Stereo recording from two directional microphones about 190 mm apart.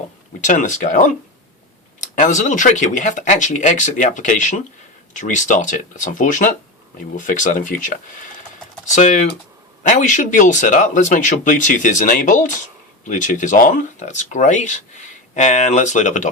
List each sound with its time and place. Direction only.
0.4 s speech: 40° left (ahead or behind)
9.9 s speech: 40° left (ahead or behind)